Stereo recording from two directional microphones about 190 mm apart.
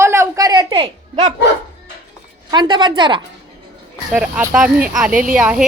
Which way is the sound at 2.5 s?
25° right (ahead or behind).